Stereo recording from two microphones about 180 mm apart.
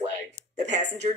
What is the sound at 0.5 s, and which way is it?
Speech, 40° right (ahead or behind).